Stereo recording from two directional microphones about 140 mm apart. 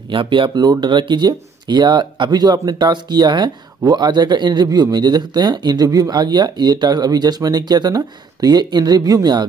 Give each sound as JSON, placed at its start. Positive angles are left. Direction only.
{"t": 0.1, "sound": "speech", "side_deg": -35}